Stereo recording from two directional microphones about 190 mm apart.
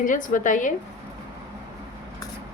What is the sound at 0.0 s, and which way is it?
Speech, 45° left (ahead or behind).